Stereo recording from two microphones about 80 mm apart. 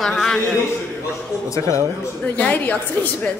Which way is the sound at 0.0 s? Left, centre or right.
Centre.